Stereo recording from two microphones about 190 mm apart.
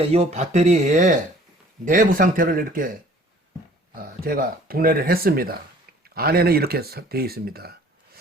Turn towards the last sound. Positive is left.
turn(degrees=-55)  # may be behind; listen again after turning